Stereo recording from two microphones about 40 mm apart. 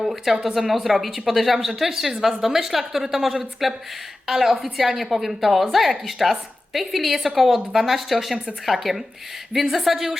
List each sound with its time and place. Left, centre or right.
0.0 s a woman's voice: centre